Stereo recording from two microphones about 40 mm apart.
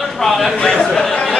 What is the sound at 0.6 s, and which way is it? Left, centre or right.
Speech, centre.